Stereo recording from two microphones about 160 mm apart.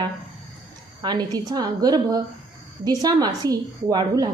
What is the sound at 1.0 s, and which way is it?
A woman's voice, 25° right (ahead or behind).